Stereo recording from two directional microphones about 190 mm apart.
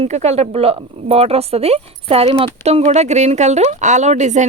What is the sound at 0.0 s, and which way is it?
Speech, 35° right (ahead or behind).